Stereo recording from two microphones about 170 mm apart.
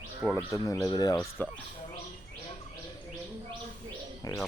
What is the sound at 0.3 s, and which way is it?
Speech, 15° left (ahead or behind).